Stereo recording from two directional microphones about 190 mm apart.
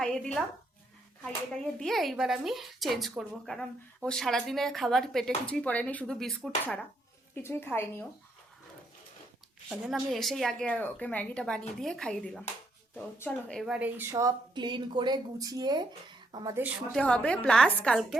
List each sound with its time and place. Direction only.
0.0 s speech: 5° left (ahead or behind)
1.8 s a woman's voice: centre (ahead or behind)
9.6 s a woman's voice: centre (ahead or behind)
13.6 s speech: 5° right (ahead or behind); by 16.6 s 20° right (ahead or behind)
16.6 s a woman's voice: 10° right (ahead or behind)
17.0 s speech: 5° left (ahead or behind)